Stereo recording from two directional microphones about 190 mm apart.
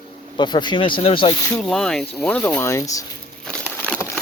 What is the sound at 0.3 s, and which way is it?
Speech, 25° left (ahead or behind).